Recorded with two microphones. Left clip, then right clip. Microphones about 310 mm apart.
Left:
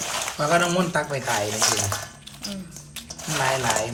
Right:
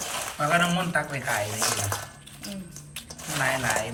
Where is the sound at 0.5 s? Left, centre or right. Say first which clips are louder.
Left 3 dB; centre.